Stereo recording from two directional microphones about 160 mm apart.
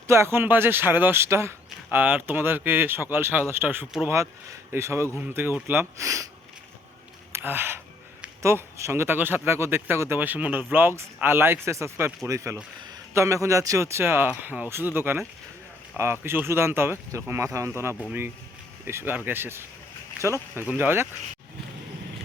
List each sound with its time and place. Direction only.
0.1 s speech: 15° right (ahead or behind)
7.3 s speech: 15° right (ahead or behind)
16.2 s speech: 15° right (ahead or behind)